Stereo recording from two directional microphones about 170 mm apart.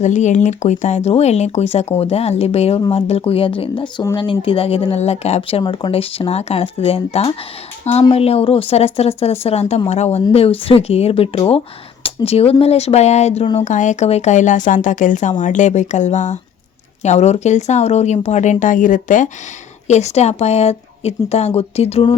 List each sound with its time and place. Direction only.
0.0 s speech: 45° left (ahead or behind)
13.4 s speech: 30° left (ahead or behind)
13.7 s speech: 45° left (ahead or behind)